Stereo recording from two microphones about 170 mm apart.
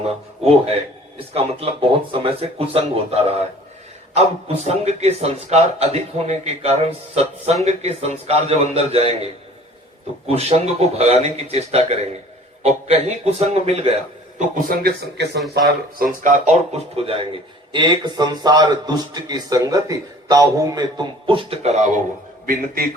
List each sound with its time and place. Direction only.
1.3 s a man's voice: 35° right (ahead or behind)
14.3 s speech: 55° right (ahead or behind); by 15.4 s 70° right (ahead or behind)
15.5 s a man's voice: 55° right (ahead or behind)
22.4 s speech: 60° right (ahead or behind)